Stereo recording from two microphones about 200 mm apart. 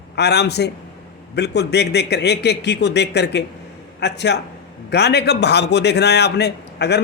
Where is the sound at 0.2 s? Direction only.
55° left (ahead or behind).